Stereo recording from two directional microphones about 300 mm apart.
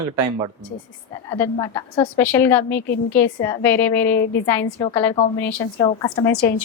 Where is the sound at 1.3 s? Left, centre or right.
Centre.